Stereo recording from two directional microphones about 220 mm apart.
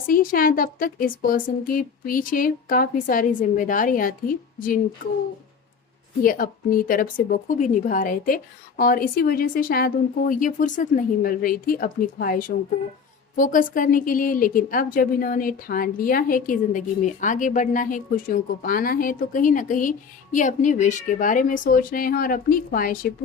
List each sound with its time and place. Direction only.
0.1 s a woman's voice: 40° left (ahead or behind)
6.2 s a woman's voice: 40° left (ahead or behind)